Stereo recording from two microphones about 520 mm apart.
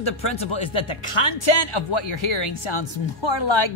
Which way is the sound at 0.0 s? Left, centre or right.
Left.